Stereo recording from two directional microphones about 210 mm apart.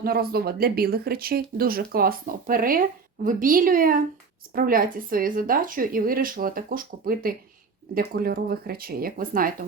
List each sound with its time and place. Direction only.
0.0 s a woman's voice: 45° right (ahead or behind)